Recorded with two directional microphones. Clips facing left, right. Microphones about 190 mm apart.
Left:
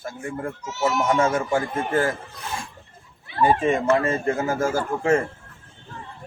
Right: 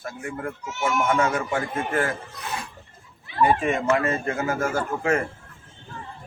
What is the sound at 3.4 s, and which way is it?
A man's voice, 30° left (ahead or behind).